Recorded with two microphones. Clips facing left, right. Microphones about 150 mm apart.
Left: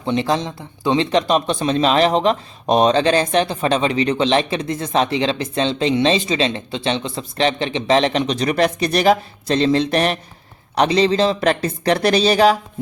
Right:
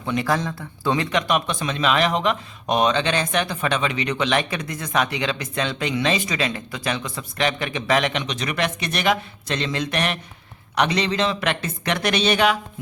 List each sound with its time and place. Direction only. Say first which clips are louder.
0.0 s speech: left 3 dB; 25° left (ahead or behind)